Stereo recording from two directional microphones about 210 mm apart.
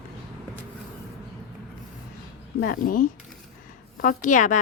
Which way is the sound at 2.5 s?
45° left (ahead or behind).